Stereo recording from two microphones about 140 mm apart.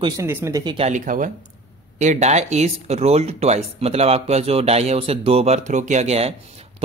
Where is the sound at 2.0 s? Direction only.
55° right (ahead or behind).